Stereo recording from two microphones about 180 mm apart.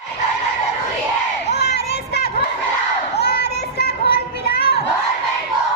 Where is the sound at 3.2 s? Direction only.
65° left (ahead or behind).